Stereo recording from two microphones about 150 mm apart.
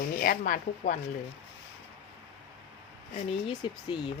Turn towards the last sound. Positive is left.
turn(degrees=30)  # may be behind; listen again after turning